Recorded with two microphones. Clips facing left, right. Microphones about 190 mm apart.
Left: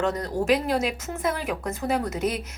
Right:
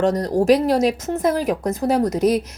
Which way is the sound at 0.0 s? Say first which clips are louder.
Right 7 dB; 40° right (ahead or behind).